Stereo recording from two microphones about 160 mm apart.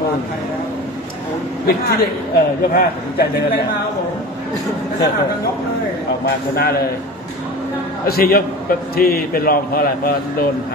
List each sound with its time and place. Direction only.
1.7 s a man's voice: 75° left (ahead or behind)
6.2 s a man's voice: 70° left (ahead or behind)
8.1 s a man's voice: 70° left (ahead or behind)